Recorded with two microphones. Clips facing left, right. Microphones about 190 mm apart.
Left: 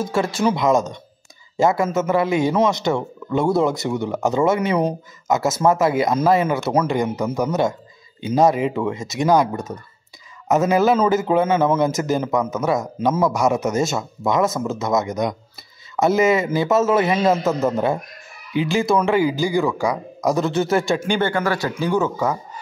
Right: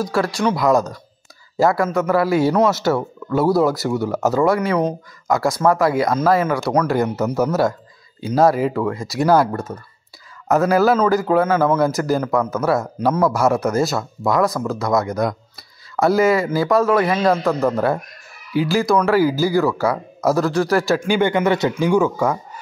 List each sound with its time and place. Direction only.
0.0 s a man's voice: centre (ahead or behind)
1.6 s speech: 20° left (ahead or behind)
2.5 s a man's voice: 5° right (ahead or behind)
4.3 s speech: 20° left (ahead or behind)
6.6 s a man's voice: 5° left (ahead or behind)
8.4 s speech: 20° left (ahead or behind)
18.7 s a man's voice: centre (ahead or behind)
19.0 s speech: 20° left (ahead or behind)
20.4 s a man's voice: centre (ahead or behind)
21.2 s speech: 20° right (ahead or behind)